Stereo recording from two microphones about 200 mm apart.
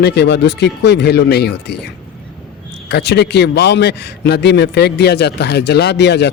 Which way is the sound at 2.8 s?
55° left (ahead or behind).